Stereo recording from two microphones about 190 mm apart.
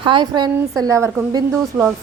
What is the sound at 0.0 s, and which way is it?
A woman's voice, 25° right (ahead or behind).